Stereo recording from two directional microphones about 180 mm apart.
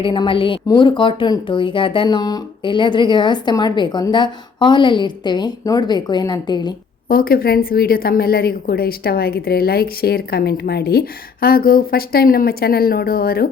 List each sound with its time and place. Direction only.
0.0 s a woman's voice: 30° left (ahead or behind)
7.1 s a woman's voice: 55° left (ahead or behind)